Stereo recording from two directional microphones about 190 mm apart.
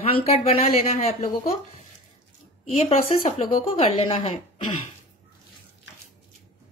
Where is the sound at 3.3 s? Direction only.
30° left (ahead or behind).